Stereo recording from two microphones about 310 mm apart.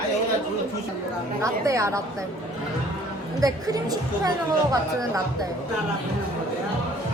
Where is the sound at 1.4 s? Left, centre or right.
Centre.